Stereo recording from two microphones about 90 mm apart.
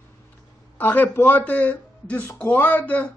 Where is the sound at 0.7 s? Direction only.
20° left (ahead or behind).